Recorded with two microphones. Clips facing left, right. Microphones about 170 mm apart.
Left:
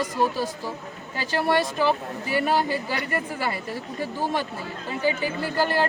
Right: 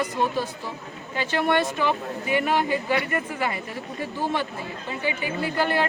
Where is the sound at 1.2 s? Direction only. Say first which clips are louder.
Even; 35° left (ahead or behind).